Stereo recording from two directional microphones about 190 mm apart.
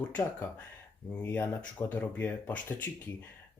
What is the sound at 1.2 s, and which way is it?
Speech, 10° left (ahead or behind).